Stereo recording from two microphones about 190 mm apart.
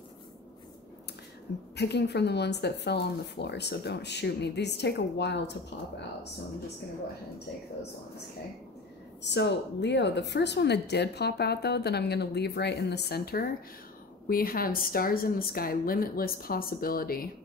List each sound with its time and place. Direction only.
1.8 s speech: 60° left (ahead or behind)
9.2 s a woman's voice: 65° left (ahead or behind)